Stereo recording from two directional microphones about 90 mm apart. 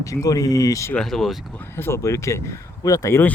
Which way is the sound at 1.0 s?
5° left (ahead or behind).